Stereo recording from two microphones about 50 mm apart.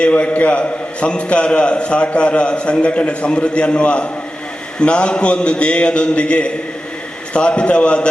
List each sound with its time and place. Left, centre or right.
0.0 s a man's voice: left